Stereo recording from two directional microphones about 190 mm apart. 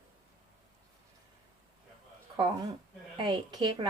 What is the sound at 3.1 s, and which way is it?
Speech, 25° right (ahead or behind).